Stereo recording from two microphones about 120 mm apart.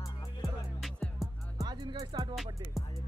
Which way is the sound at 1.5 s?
35° right (ahead or behind).